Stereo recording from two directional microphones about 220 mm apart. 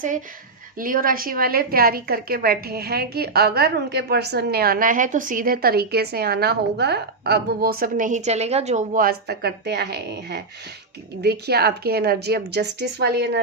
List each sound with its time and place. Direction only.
0.8 s a woman's voice: 40° right (ahead or behind)